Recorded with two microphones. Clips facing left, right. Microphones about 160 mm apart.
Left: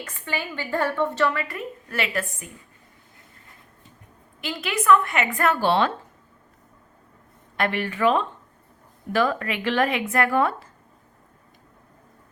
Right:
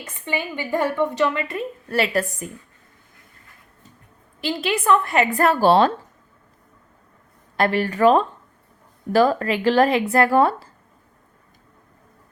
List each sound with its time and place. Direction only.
0.0 s a woman's voice: 20° right (ahead or behind)
1.9 s speech: 35° right (ahead or behind)
4.4 s speech: 30° right (ahead or behind)
7.5 s speech: 35° right (ahead or behind)